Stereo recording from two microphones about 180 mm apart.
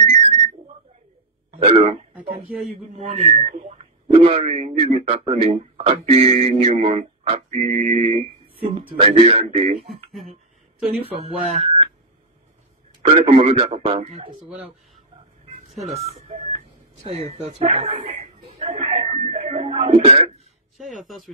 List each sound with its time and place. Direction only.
1.6 s speech: 30° right (ahead or behind)
3.0 s speech: 35° right (ahead or behind)
11.0 s speech: 30° right (ahead or behind)
13.0 s speech: 40° right (ahead or behind)
15.8 s speech: 35° right (ahead or behind)
17.1 s chuckle: 35° right (ahead or behind)